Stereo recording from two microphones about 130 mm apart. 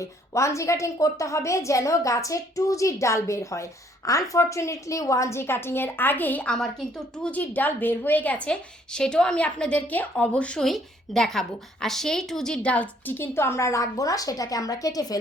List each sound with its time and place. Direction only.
0.0 s a woman's voice: 25° left (ahead or behind)